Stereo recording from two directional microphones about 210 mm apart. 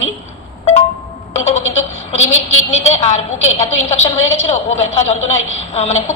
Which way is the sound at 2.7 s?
30° left (ahead or behind).